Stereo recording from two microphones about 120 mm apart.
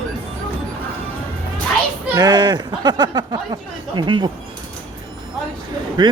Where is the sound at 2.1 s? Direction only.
35° right (ahead or behind).